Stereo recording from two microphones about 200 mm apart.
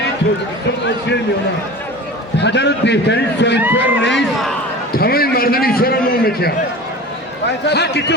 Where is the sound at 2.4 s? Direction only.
60° left (ahead or behind).